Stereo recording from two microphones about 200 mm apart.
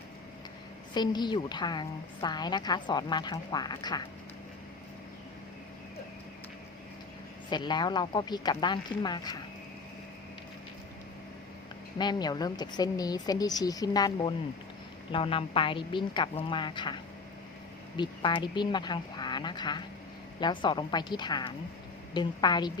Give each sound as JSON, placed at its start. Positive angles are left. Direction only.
{"t": 0.9, "sound": "a woman's voice", "side_deg": 20}
{"t": 7.5, "sound": "a woman's voice", "side_deg": 20}
{"t": 11.9, "sound": "a woman's voice", "side_deg": 20}